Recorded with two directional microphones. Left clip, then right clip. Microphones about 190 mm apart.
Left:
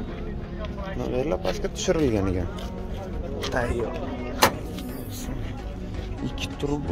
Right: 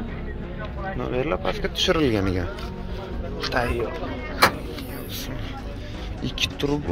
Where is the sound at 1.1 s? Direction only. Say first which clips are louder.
Right 1 dB; 20° left (ahead or behind).